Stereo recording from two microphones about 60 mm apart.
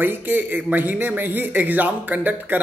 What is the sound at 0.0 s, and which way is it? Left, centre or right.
Speech, right.